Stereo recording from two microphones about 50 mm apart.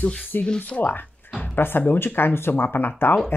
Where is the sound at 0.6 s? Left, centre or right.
Left.